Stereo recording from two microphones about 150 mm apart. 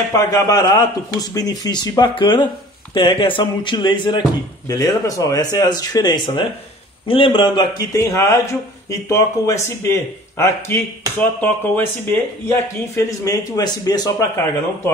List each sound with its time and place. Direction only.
0.3 s speech: 20° left (ahead or behind)